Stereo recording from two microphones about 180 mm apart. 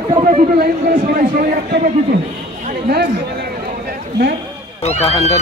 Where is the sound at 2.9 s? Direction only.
65° right (ahead or behind).